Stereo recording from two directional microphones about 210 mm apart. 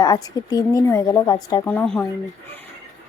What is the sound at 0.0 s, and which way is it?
Speech, 15° left (ahead or behind).